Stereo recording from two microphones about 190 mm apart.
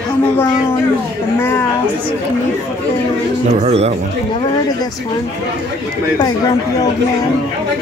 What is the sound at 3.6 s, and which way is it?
Speech, 35° right (ahead or behind).